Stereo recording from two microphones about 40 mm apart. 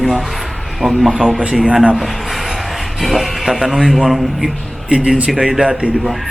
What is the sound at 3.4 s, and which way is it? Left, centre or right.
Speech, centre.